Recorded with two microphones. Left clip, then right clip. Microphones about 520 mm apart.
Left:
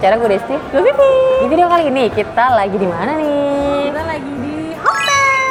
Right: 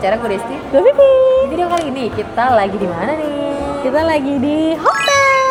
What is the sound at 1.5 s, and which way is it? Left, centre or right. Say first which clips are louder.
A woman's voice: left 6 dB; centre.